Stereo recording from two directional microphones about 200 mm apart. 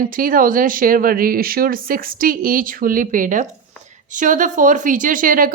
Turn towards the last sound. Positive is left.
turn(degrees=-45)  # may be behind; listen again after turning